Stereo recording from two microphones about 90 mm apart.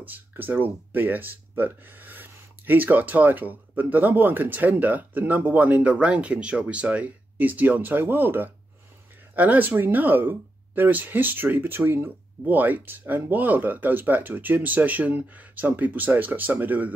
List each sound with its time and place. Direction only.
0.0 s speech: 20° right (ahead or behind)